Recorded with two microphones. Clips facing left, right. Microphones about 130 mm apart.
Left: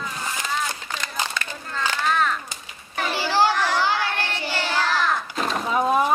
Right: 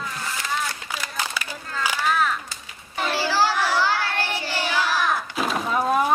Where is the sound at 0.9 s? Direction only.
10° right (ahead or behind).